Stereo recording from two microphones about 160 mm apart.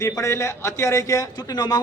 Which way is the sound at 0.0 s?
20° left (ahead or behind).